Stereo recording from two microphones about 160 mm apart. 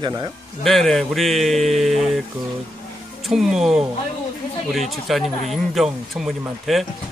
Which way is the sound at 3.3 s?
Centre (ahead or behind).